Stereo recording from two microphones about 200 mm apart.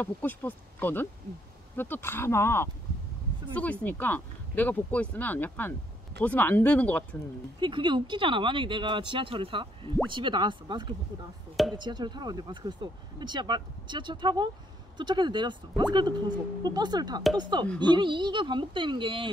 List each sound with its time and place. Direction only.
0.0 s speech: 10° left (ahead or behind)
7.6 s speech: 25° right (ahead or behind)